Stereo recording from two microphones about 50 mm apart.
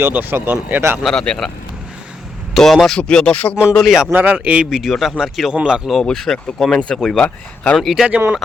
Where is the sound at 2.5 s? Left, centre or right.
Centre.